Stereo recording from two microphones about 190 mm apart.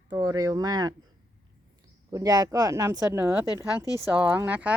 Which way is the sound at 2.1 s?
20° right (ahead or behind).